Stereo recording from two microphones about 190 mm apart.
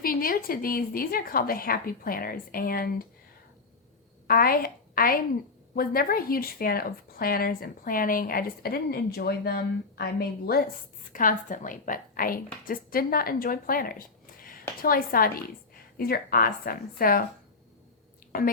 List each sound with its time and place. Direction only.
0.0 s a woman's voice: 50° left (ahead or behind)
4.3 s a woman's voice: 50° left (ahead or behind)
18.3 s speech: 50° left (ahead or behind)